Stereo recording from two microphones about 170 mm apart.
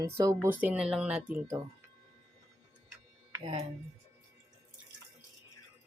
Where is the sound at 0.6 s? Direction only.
5° right (ahead or behind).